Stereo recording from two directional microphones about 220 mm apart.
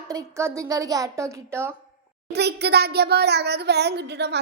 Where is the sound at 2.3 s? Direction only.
50° right (ahead or behind).